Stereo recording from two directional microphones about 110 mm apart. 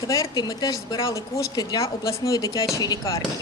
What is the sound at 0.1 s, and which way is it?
A woman's voice, 35° left (ahead or behind).